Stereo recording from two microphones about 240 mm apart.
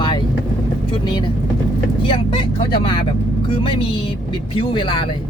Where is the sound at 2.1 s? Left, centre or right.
Left.